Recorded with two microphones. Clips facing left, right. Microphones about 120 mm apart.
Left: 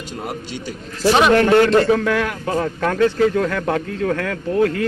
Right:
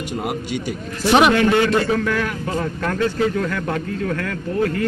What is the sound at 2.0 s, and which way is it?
A man's voice, 90° left.